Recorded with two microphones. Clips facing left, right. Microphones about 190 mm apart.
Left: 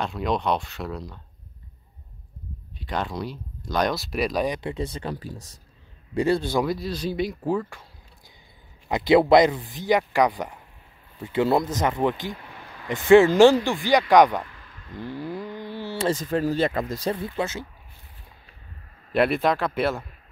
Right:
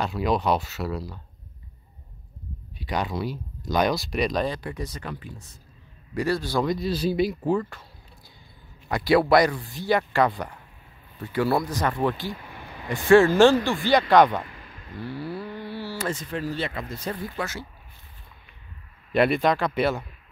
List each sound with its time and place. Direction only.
0.0 s speech: 5° right (ahead or behind)
2.8 s speech: 5° right (ahead or behind)
4.6 s speech: 25° left (ahead or behind)
6.1 s speech: 25° left (ahead or behind)
6.6 s speech: centre (ahead or behind)
8.8 s speech: 20° left (ahead or behind)
12.5 s a sound: 20° right (ahead or behind)
12.8 s speech: 20° left (ahead or behind)
14.4 s a sound: 15° right (ahead or behind)
15.0 s speech: 15° left (ahead or behind)
16.1 s speech: 40° left (ahead or behind)
17.1 s speech: 25° left (ahead or behind)
19.1 s speech: centre (ahead or behind)